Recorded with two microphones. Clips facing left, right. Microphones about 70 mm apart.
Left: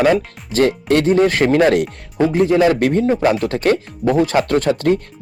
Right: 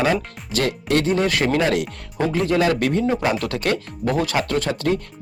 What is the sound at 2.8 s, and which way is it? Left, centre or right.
Speech, left.